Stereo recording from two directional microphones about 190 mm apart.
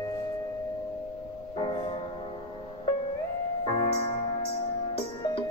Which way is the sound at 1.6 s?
25° left (ahead or behind).